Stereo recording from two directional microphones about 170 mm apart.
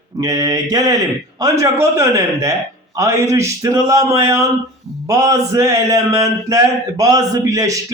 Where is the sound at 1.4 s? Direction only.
20° right (ahead or behind).